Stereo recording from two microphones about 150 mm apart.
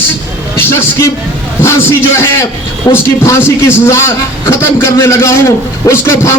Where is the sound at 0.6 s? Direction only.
15° left (ahead or behind).